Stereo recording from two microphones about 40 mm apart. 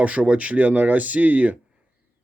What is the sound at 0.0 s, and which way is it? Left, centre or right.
Speech, right.